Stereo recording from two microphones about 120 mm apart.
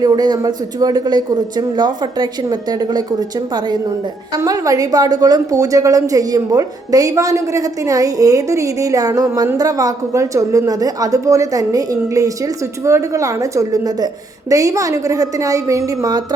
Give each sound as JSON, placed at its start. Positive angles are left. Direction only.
{"t": 0.0, "sound": "a woman's voice", "side_deg": -35}